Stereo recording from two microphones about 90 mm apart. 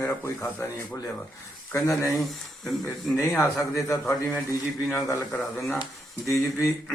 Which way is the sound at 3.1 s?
30° left (ahead or behind).